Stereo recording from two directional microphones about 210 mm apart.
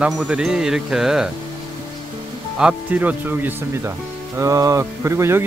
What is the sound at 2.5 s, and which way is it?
Speech, 5° right (ahead or behind).